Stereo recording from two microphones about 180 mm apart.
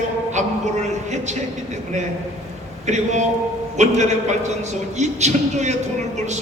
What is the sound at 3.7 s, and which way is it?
A man's voice, 40° right (ahead or behind).